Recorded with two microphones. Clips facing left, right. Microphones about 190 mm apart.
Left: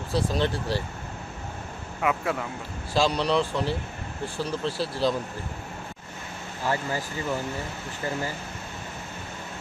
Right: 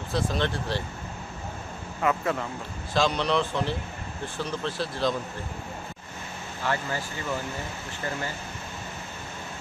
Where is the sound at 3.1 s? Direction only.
35° left (ahead or behind).